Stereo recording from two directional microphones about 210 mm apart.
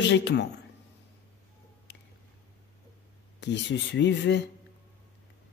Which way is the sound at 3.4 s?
55° left (ahead or behind).